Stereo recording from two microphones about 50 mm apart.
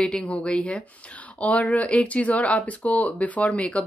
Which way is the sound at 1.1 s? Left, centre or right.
Left.